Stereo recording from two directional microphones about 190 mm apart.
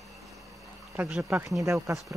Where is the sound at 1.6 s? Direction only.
15° right (ahead or behind).